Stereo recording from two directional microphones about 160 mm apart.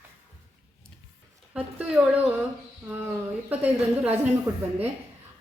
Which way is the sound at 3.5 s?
10° right (ahead or behind).